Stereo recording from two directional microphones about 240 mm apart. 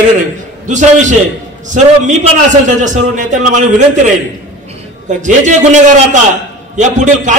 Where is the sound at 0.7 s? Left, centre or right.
Right.